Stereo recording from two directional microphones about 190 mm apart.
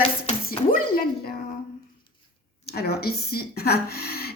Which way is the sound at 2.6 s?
55° left (ahead or behind).